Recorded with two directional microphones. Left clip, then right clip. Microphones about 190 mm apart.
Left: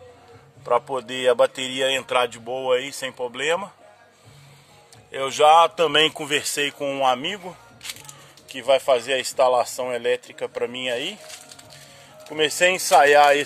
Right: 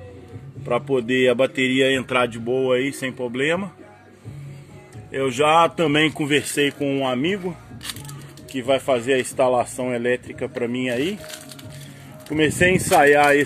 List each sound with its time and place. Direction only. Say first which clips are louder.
0.7 s speech: right 1 dB; 10° left (ahead or behind)
5.1 s speech: left 2 dB; 20° left (ahead or behind)
8.5 s speech: left 1 dB; 25° left (ahead or behind)
12.3 s speech: right 1 dB; 20° left (ahead or behind)